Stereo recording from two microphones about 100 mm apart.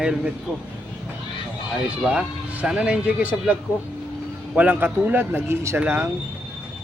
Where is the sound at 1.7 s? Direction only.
10° right (ahead or behind).